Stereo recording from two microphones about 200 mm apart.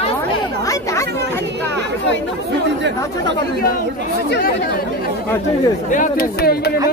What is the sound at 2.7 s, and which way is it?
Speech, 60° right (ahead or behind).